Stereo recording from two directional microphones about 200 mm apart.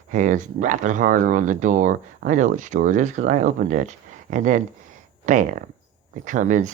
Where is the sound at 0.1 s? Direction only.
40° right (ahead or behind).